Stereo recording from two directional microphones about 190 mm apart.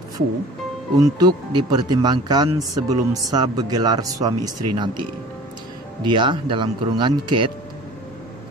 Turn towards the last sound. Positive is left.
turn(degrees=-25)  # may be behind; listen again after turning